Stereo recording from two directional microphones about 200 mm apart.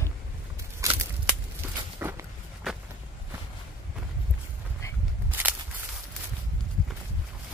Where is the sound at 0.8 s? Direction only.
15° right (ahead or behind).